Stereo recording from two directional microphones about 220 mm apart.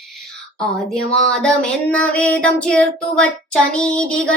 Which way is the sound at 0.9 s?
5° left (ahead or behind).